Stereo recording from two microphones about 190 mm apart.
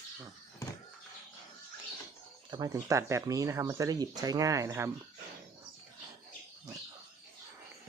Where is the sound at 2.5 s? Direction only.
20° right (ahead or behind).